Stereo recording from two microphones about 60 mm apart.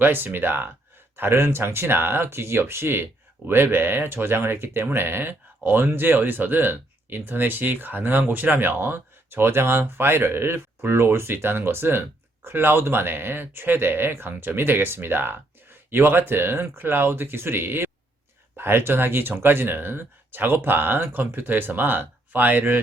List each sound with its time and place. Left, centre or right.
0.0 s speech: right